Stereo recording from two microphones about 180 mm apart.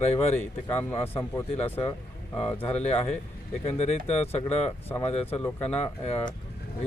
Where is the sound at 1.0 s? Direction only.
35° left (ahead or behind).